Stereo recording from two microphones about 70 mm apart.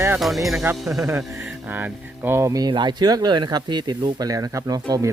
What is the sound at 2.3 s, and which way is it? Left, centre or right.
Speech, right.